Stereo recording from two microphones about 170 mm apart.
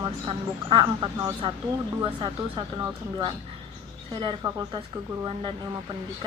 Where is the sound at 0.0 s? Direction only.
30° right (ahead or behind).